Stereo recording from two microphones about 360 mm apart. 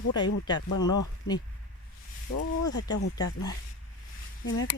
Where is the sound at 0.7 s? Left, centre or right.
Left.